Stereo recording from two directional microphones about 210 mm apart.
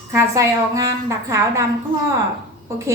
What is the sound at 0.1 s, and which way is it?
A woman's voice, 15° right (ahead or behind).